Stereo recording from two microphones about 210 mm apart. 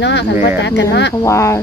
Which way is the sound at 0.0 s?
55° left (ahead or behind).